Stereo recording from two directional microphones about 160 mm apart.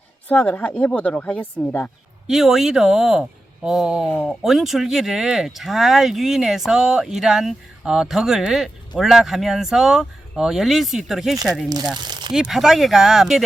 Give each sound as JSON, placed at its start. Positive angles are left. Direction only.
{"t": 0.3, "sound": "speech", "side_deg": 10}
{"t": 2.2, "sound": "speech", "side_deg": 0}
{"t": 11.9, "sound": "speech", "side_deg": -25}
{"t": 12.3, "sound": "speech", "side_deg": 0}